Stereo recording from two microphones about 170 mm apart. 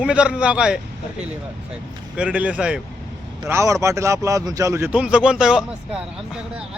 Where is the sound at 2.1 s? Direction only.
5° right (ahead or behind).